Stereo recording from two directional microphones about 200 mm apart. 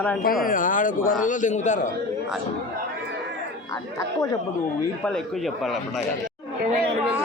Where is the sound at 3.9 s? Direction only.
15° left (ahead or behind).